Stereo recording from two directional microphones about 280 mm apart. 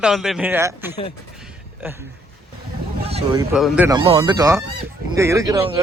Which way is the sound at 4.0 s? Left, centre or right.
Centre.